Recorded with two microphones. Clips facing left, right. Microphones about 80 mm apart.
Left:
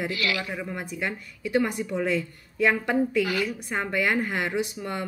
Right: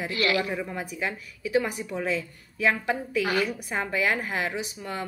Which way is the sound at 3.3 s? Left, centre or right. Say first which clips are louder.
Right 1 dB; right.